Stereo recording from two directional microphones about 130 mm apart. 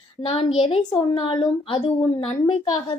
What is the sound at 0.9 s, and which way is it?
Speech, 35° left (ahead or behind).